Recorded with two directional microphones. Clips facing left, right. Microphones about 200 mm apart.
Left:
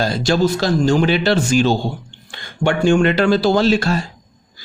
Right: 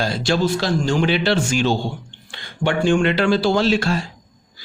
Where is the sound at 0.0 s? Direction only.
40° left (ahead or behind).